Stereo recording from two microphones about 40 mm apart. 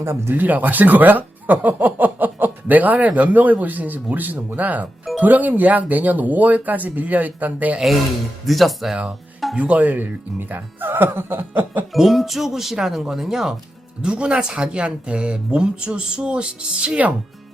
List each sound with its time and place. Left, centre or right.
0.0 s speech: right
0.3 s speech: right
8.4 s speech: centre
9.6 s speech: right
11.9 s speech: centre
14.0 s speech: right